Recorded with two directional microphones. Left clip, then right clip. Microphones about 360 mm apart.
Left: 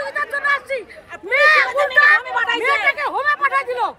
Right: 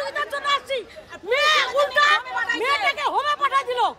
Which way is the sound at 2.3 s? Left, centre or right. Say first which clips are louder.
Left 5 dB; left.